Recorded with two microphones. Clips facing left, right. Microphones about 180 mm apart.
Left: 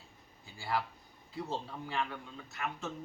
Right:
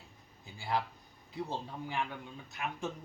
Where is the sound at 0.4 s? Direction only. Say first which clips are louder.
Right 1 dB; 20° right (ahead or behind).